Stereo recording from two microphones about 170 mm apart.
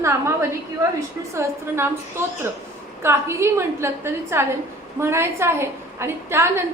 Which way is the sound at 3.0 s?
15° right (ahead or behind).